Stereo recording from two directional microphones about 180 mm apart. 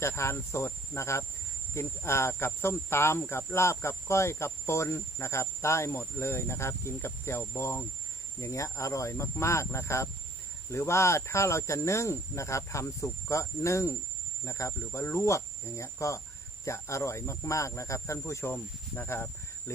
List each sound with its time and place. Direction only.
0.0 s cricket: 15° left (ahead or behind)